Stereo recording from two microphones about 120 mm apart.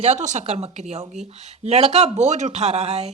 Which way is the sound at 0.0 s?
75° right (ahead or behind).